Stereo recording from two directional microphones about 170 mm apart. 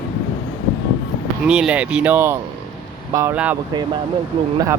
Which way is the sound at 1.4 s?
5° right (ahead or behind).